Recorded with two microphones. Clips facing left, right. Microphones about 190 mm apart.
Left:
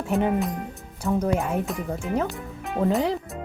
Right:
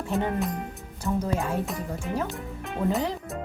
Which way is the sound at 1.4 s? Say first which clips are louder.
Left 2 dB; centre (ahead or behind).